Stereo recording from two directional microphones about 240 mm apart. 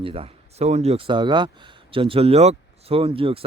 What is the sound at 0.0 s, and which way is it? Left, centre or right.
Speech, right.